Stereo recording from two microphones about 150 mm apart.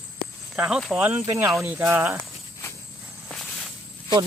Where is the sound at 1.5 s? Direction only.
5° right (ahead or behind).